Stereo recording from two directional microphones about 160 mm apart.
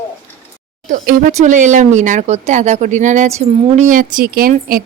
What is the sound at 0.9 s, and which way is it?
A woman's voice, 60° right (ahead or behind).